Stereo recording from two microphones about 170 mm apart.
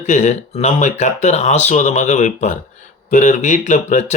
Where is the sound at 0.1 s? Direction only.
45° left (ahead or behind).